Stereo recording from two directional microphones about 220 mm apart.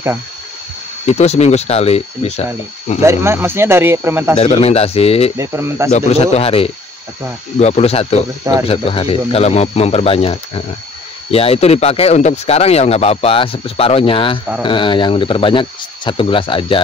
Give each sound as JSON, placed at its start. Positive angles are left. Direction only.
{"t": 1.0, "sound": "speech", "side_deg": 30}
{"t": 3.1, "sound": "speech", "side_deg": -10}
{"t": 4.4, "sound": "speech", "side_deg": 30}
{"t": 5.4, "sound": "speech", "side_deg": -10}
{"t": 5.9, "sound": "speech", "side_deg": 30}